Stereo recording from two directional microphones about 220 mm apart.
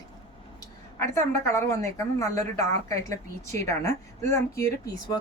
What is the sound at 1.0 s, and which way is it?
Speech, 15° left (ahead or behind).